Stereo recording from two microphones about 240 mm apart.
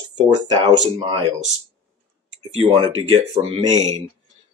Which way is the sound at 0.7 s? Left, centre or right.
Right.